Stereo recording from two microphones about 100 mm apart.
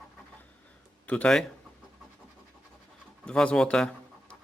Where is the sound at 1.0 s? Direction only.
10° left (ahead or behind).